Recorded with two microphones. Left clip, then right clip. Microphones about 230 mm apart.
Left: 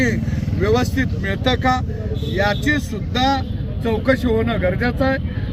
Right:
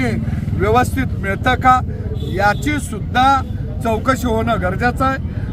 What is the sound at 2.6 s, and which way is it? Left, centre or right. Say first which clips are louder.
Speech: left 1 dB; right.